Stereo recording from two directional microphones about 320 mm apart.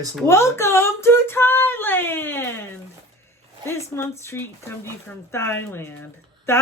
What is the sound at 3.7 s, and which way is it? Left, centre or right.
Female singing, centre.